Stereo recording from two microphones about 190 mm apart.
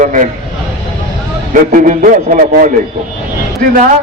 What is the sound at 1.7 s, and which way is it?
Speech, 45° right (ahead or behind).